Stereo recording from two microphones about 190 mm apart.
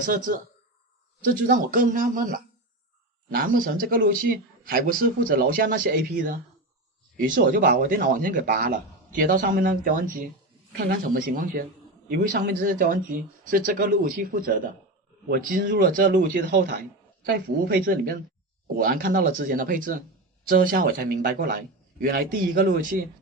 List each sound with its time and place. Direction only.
0.0 s speech: 45° right (ahead or behind)
7.2 s speech: 45° right (ahead or behind)